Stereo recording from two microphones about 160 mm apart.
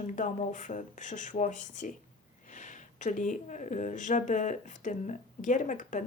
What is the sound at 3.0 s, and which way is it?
Speech, 50° left (ahead or behind).